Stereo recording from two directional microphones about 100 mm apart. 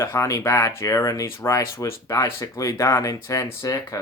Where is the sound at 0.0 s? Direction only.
30° left (ahead or behind).